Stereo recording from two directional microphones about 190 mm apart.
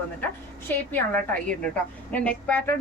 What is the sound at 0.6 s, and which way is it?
A woman's voice, 10° left (ahead or behind).